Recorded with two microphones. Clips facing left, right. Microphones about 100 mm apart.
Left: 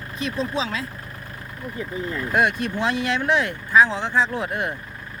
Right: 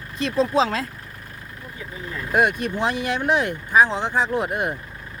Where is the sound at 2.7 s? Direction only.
15° right (ahead or behind).